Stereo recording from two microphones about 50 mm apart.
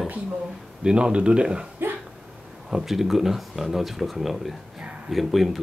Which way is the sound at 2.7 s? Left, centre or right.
Centre.